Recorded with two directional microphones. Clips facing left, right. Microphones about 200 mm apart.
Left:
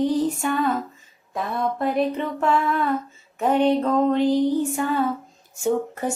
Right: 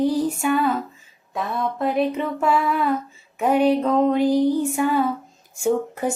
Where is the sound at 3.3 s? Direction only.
10° right (ahead or behind).